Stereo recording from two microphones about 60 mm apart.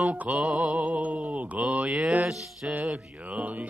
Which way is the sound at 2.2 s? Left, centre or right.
Centre.